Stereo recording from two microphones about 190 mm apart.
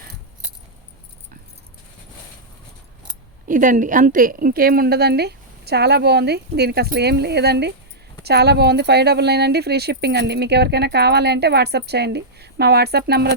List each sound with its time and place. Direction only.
3.4 s speech: 45° right (ahead or behind)